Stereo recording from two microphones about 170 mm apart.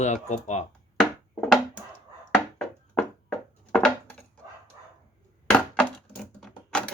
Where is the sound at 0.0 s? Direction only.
40° left (ahead or behind).